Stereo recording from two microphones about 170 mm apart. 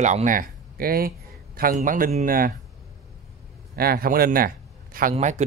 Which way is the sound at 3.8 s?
60° right (ahead or behind).